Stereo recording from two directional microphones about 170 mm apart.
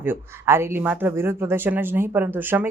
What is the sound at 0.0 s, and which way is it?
Speech, 15° right (ahead or behind).